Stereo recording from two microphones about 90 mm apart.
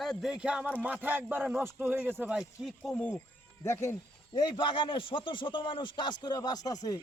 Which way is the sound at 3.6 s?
30° left (ahead or behind).